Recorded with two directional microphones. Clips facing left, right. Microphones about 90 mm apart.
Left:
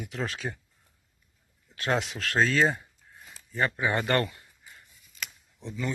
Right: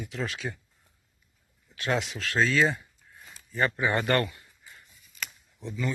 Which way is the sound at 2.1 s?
50° left (ahead or behind).